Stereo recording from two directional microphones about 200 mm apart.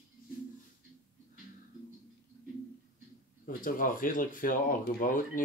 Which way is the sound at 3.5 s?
40° left (ahead or behind).